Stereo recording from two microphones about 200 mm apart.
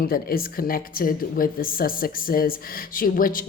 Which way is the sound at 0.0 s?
45° left (ahead or behind).